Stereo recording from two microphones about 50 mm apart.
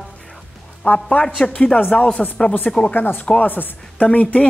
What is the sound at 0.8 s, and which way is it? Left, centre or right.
Speech, left.